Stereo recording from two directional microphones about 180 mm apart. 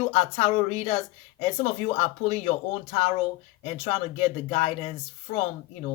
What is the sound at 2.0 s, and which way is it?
A woman's voice, 35° left (ahead or behind).